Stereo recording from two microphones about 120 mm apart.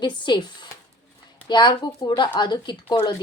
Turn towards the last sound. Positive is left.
turn(degrees=40)  # may be behind; listen again after turning